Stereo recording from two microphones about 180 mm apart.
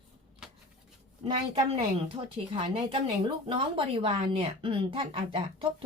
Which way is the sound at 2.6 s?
30° right (ahead or behind).